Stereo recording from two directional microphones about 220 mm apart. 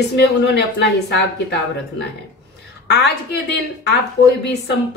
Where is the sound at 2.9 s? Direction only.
50° left (ahead or behind).